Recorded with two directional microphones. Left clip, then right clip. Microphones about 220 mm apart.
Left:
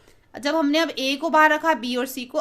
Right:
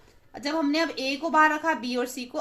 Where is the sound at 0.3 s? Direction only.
35° left (ahead or behind).